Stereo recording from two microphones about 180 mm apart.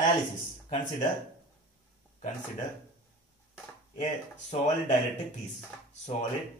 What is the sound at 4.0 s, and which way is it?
Speech, 35° left (ahead or behind).